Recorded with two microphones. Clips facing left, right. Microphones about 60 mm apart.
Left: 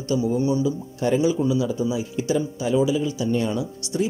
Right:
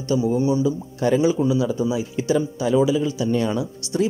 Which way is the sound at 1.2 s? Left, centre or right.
Right.